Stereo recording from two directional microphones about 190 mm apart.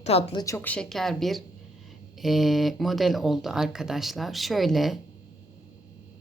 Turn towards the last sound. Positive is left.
turn(degrees=0)  # may be behind; listen again after turning